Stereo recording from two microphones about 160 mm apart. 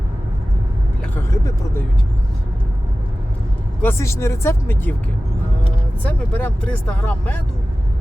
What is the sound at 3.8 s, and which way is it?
Speech, 15° left (ahead or behind).